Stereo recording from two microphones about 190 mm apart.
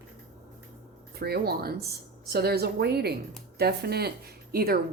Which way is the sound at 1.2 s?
55° right (ahead or behind).